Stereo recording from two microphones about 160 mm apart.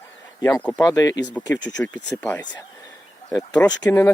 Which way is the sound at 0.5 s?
10° left (ahead or behind).